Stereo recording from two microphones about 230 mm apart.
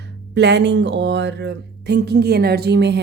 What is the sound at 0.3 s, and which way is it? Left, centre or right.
A woman's voice, right.